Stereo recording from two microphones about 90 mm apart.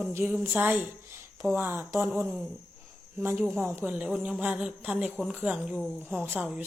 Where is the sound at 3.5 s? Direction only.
30° right (ahead or behind).